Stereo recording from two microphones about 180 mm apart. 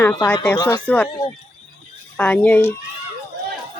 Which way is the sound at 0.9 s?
5° left (ahead or behind).